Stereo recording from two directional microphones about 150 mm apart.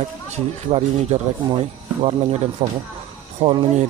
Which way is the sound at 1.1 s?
45° right (ahead or behind).